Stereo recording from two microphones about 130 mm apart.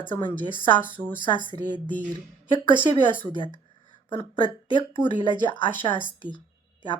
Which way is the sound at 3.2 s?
40° left (ahead or behind).